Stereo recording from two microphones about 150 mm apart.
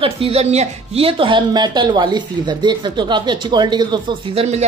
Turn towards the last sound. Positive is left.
turn(degrees=-40)  # may be behind; listen again after turning